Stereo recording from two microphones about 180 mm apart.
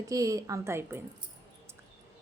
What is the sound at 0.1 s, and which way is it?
Speech, 20° right (ahead or behind).